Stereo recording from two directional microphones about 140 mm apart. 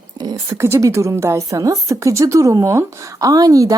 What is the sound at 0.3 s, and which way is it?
Speech, 20° right (ahead or behind).